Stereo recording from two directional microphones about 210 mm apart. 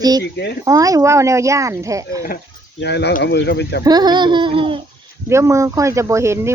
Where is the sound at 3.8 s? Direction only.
20° right (ahead or behind).